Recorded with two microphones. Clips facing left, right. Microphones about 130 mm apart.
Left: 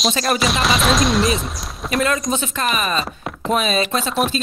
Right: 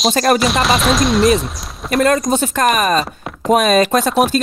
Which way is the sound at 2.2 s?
45° right (ahead or behind).